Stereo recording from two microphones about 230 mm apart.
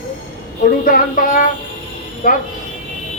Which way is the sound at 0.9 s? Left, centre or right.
Left.